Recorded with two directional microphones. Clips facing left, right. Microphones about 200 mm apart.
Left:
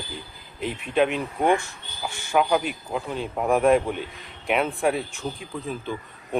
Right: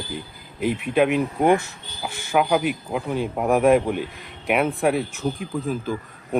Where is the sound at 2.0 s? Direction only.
5° right (ahead or behind).